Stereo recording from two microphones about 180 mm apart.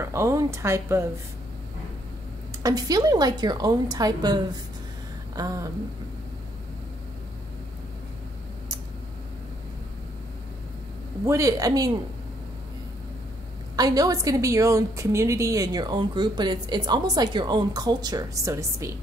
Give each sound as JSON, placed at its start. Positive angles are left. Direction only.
{"t": 0.0, "sound": "speech", "side_deg": -15}
{"t": 2.6, "sound": "a woman's voice", "side_deg": -20}
{"t": 5.3, "sound": "a sound", "side_deg": -20}
{"t": 11.2, "sound": "a woman's voice", "side_deg": -15}
{"t": 13.7, "sound": "a woman's voice", "side_deg": -20}